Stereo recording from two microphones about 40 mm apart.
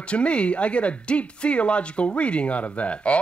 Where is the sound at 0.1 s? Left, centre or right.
Left.